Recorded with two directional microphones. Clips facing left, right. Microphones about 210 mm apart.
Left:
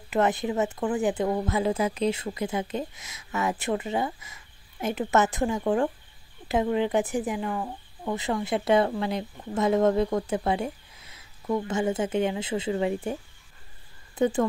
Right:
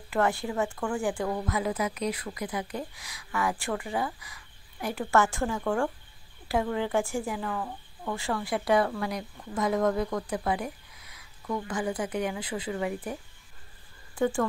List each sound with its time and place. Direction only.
0.1 s speech: 20° left (ahead or behind)